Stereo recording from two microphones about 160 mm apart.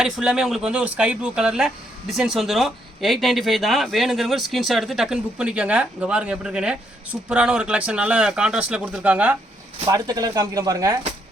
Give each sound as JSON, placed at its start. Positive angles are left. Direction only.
{"t": 0.0, "sound": "speech", "side_deg": -5}
{"t": 9.8, "sound": "speech", "side_deg": -25}